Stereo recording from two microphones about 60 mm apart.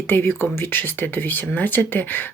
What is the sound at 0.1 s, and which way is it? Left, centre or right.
Speech, left.